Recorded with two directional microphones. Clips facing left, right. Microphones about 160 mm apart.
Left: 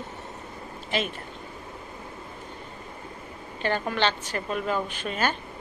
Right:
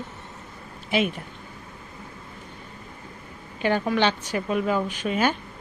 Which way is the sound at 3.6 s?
10° right (ahead or behind).